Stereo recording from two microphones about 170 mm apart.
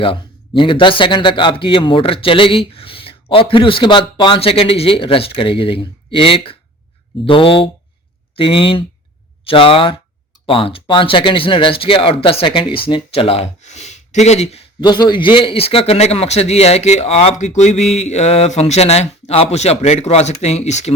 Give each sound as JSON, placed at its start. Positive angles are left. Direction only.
{"t": 0.0, "sound": "a man's voice", "side_deg": 30}
{"t": 14.8, "sound": "a man's voice", "side_deg": 25}